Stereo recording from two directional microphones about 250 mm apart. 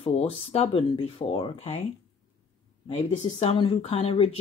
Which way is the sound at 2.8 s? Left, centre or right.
Left.